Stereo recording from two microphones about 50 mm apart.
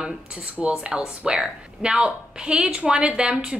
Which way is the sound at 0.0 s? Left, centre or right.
Right.